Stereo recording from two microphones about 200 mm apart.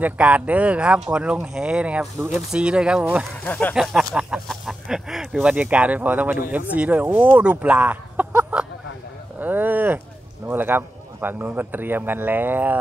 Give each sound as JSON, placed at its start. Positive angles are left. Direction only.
{"t": 0.0, "sound": "speech", "side_deg": -5}
{"t": 3.4, "sound": "a man's voice", "side_deg": 10}
{"t": 9.4, "sound": "a sound", "side_deg": -10}
{"t": 10.4, "sound": "a man's voice", "side_deg": -10}